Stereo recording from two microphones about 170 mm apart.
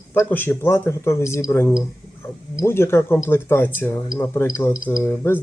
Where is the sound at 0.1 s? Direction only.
10° left (ahead or behind).